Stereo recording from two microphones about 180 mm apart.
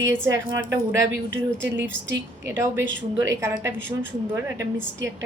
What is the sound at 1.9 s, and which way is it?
Speech, 90° right.